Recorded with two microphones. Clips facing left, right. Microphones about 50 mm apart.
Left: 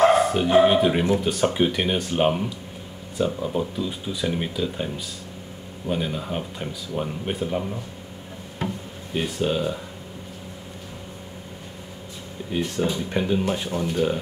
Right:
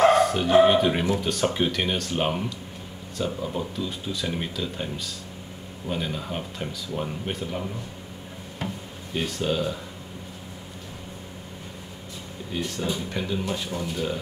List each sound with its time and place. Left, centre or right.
0.0 s speech: centre
9.1 s speech: centre
12.5 s speech: centre